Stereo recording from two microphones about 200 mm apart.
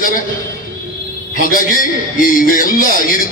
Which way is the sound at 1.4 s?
45° left (ahead or behind).